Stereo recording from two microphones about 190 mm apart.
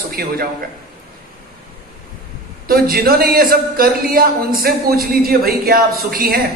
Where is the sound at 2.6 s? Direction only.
50° right (ahead or behind).